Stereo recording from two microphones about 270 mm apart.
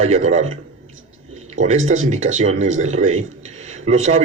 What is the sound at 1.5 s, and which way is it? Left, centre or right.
A man's voice, right.